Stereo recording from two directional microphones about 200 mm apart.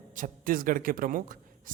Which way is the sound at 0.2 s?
45° right (ahead or behind).